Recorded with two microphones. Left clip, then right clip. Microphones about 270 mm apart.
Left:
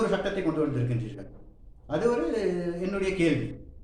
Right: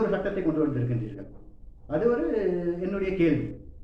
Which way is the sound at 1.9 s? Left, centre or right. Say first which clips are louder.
Right 1 dB; left.